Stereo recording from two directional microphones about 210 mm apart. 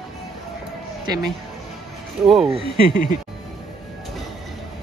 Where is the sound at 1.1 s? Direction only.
20° right (ahead or behind).